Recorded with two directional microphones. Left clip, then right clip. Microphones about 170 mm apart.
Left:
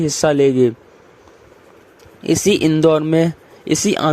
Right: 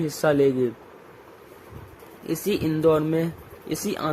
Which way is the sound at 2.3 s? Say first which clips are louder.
Left 11 dB; 55° left (ahead or behind).